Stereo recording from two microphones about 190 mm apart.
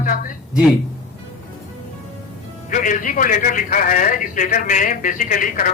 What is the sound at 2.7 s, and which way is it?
A man's voice, 45° left (ahead or behind).